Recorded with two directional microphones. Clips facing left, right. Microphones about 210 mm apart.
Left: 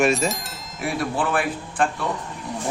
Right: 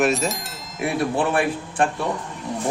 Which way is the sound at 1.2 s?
25° right (ahead or behind).